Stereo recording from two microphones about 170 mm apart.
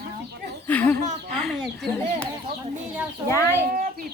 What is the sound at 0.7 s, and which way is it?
Speech, 10° left (ahead or behind).